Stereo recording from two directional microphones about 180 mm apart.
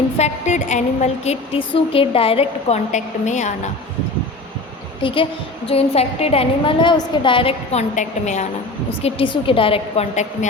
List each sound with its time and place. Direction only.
0.2 s a woman's voice: 40° left (ahead or behind)
5.0 s a woman's voice: 30° left (ahead or behind)